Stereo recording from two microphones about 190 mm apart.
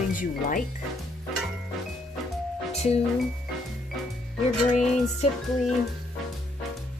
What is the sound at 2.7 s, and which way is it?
Music, 35° left (ahead or behind).